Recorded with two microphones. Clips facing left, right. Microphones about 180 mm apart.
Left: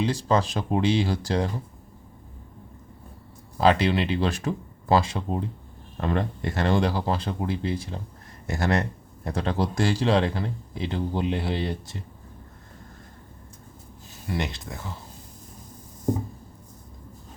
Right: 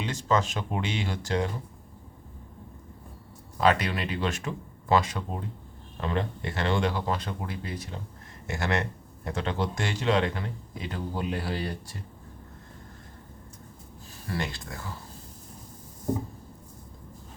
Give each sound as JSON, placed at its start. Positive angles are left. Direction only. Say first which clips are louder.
{"t": 0.0, "sound": "speech", "louder": "left 4 dB", "side_deg": 35}
{"t": 3.6, "sound": "speech", "louder": "left 4 dB", "side_deg": 30}
{"t": 6.0, "sound": "speech", "louder": "left 4 dB", "side_deg": 45}
{"t": 14.3, "sound": "speech", "louder": "left 3 dB", "side_deg": 20}